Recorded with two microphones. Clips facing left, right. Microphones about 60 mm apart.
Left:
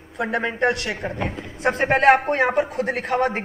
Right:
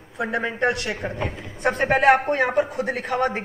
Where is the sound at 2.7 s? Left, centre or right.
Left.